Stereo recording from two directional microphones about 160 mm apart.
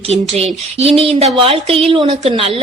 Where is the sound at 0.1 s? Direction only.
40° right (ahead or behind).